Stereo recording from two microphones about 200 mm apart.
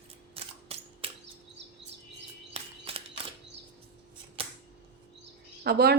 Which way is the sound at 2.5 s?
30° right (ahead or behind).